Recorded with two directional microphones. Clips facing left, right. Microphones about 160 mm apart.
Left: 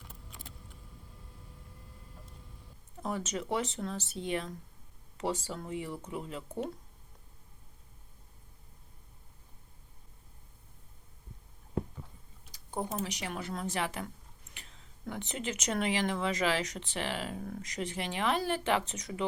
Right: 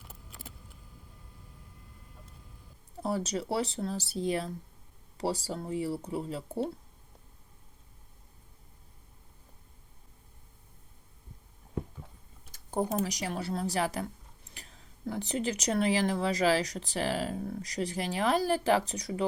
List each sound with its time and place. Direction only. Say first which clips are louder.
0.1 s a sound: right 2 dB; 5° right (ahead or behind)
3.0 s speech: right 4 dB; 35° right (ahead or behind)
12.5 s speech: right 6 dB; 45° right (ahead or behind)